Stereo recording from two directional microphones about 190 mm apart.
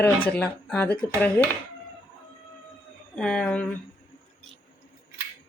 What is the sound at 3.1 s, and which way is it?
Speech, 5° left (ahead or behind).